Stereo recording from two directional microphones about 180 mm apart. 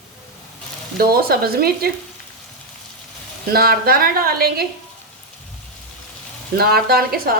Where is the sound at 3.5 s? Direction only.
55° right (ahead or behind).